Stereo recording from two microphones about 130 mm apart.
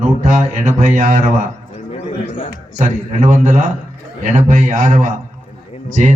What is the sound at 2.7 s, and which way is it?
Mantra, 75° right (ahead or behind).